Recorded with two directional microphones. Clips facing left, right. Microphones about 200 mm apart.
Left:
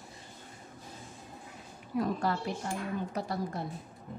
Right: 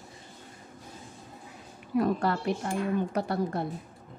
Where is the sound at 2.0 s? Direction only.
65° right (ahead or behind).